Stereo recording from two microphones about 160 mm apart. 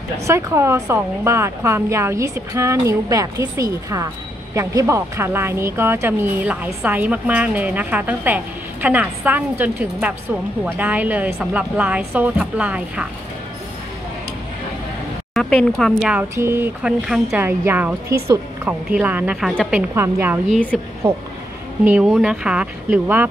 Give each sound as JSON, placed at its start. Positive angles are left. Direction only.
{"t": 0.3, "sound": "speech", "side_deg": -15}
{"t": 15.3, "sound": "a woman's voice", "side_deg": 5}
{"t": 20.4, "sound": "a woman's voice", "side_deg": 5}
{"t": 21.0, "sound": "speech", "side_deg": -35}
{"t": 21.8, "sound": "speech", "side_deg": -10}